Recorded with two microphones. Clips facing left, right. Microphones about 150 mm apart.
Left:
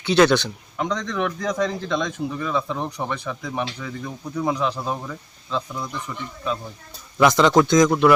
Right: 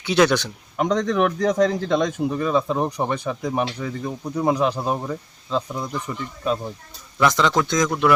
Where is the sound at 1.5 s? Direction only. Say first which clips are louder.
Right 4 dB; 45° right (ahead or behind).